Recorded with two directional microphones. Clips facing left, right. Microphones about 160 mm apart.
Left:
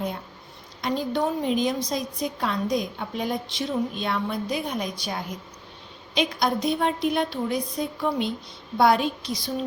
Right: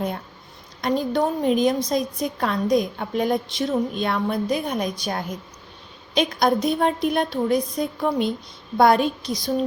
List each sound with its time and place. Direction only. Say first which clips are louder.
0.8 s a woman's voice: right 4 dB; 50° right (ahead or behind)